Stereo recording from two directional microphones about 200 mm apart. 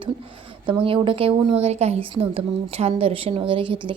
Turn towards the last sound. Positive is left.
turn(degrees=-25)  # may be behind; listen again after turning